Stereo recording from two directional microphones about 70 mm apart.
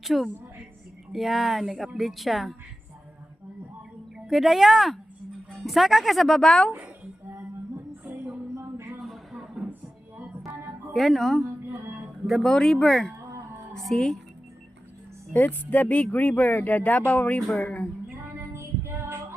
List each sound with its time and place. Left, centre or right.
0.0 s speech: centre
4.3 s speech: centre
8.0 s music: right
8.5 s a sound: right
9.0 s a sound: centre
10.9 s speech: centre
15.3 s speech: left
18.3 s female singing: right